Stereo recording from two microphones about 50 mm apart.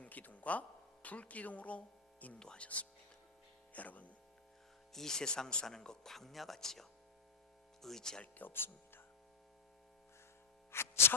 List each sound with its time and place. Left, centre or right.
0.0 s a sound: left
1.0 s speech: left
2.4 s speech: centre
3.7 s speech: left
4.9 s speech: centre
8.2 s speech: left
10.7 s a sound: left